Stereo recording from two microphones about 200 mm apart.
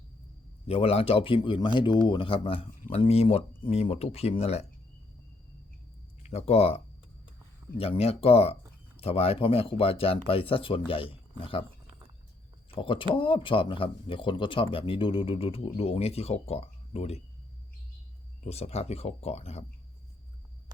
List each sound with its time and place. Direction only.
0.7 s speech: 30° left (ahead or behind)
6.3 s speech: 30° left (ahead or behind)
12.7 s speech: 25° left (ahead or behind)
18.4 s speech: 30° left (ahead or behind)